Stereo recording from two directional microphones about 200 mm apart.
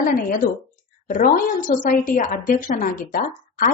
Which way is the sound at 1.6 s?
45° left (ahead or behind).